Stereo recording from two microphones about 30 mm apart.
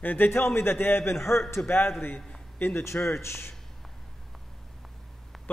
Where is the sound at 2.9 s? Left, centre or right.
Left.